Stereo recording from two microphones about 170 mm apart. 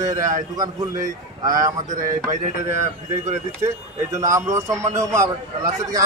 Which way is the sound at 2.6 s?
15° right (ahead or behind).